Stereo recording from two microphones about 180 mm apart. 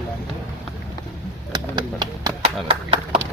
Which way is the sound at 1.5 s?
20° right (ahead or behind).